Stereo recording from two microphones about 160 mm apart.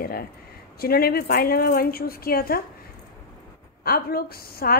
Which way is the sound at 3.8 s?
70° left (ahead or behind).